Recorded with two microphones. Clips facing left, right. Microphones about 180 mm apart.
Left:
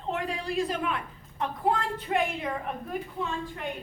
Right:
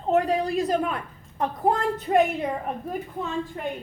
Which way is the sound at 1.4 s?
40° right (ahead or behind).